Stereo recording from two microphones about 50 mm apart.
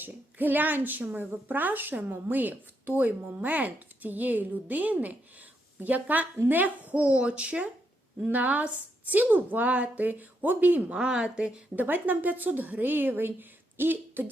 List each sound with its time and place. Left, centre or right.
0.0 s speech: right
10.9 s speech: centre
11.8 s speech: right